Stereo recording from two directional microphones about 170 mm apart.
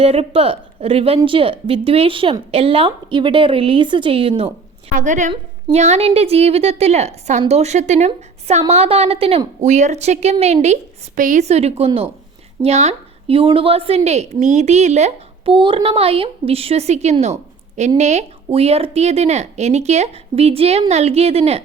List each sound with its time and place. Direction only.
0.0 s speech: 35° right (ahead or behind)
4.9 s a woman's voice: 45° right (ahead or behind)